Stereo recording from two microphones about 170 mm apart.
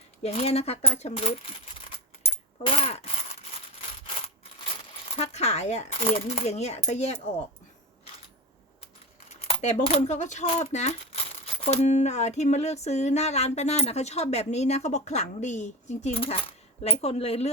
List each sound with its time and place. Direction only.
0.2 s speech: 35° left (ahead or behind)
2.6 s a sound: 35° left (ahead or behind)
5.0 s speech: 35° left (ahead or behind)
9.3 s speech: 40° left (ahead or behind)